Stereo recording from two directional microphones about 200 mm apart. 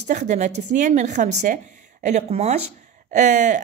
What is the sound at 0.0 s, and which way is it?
A woman's voice, 35° right (ahead or behind).